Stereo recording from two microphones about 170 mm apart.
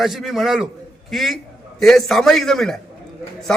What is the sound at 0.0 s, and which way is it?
A man's voice, centre (ahead or behind).